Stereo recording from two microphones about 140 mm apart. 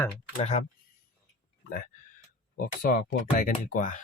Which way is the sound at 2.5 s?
90° left.